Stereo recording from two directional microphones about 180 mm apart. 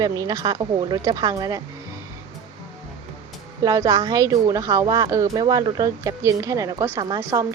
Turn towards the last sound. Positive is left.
turn(degrees=-20)  # may be behind; listen again after turning